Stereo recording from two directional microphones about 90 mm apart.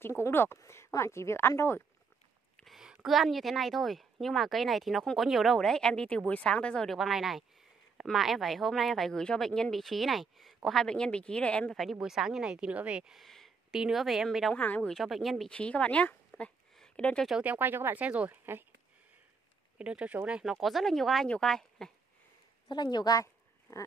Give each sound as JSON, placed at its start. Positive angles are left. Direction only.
{"t": 0.0, "sound": "speech", "side_deg": 25}
{"t": 2.5, "sound": "a woman's voice", "side_deg": 0}
{"t": 11.7, "sound": "a woman's voice", "side_deg": 0}
{"t": 14.5, "sound": "speech", "side_deg": 15}
{"t": 14.9, "sound": "a woman's voice", "side_deg": 0}
{"t": 15.5, "sound": "speech", "side_deg": 15}
{"t": 17.4, "sound": "speech", "side_deg": -20}
{"t": 19.8, "sound": "speech", "side_deg": -10}
{"t": 20.6, "sound": "a woman's voice", "side_deg": 0}
{"t": 22.7, "sound": "speech", "side_deg": 55}
{"t": 23.7, "sound": "a sound", "side_deg": 35}